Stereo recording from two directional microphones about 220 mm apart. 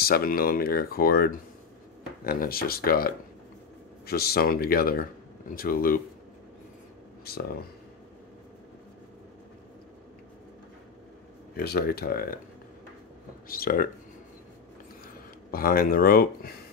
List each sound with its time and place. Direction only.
0.0 s speech: 45° left (ahead or behind)
11.5 s speech: 45° left (ahead or behind)
13.5 s speech: 40° left (ahead or behind)
15.5 s speech: 40° left (ahead or behind)